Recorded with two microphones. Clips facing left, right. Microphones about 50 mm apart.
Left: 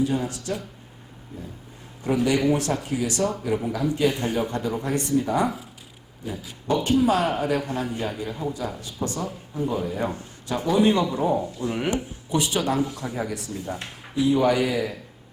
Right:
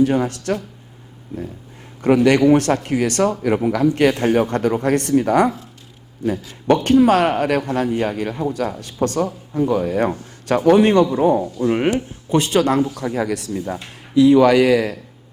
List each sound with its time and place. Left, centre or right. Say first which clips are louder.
0.0 s speech: right 8 dB; right
2.0 s speech: right 8 dB; right
6.8 s speech: right 7 dB; right
13.0 s speech: right 8 dB; right